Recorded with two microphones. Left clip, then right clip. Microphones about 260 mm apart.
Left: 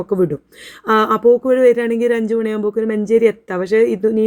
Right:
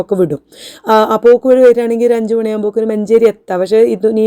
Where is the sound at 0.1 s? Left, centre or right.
Centre.